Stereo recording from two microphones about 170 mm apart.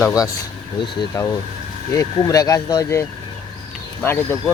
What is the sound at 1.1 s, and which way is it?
Speech, 20° left (ahead or behind).